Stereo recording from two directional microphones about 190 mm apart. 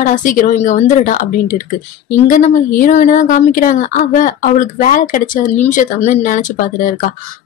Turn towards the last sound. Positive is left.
turn(degrees=45)  # may be behind; listen again after turning